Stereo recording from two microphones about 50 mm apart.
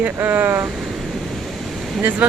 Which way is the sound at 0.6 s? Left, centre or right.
Centre.